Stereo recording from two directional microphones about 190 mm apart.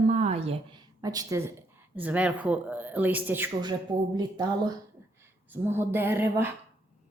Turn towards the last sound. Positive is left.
turn(degrees=-10)  # may be behind; listen again after turning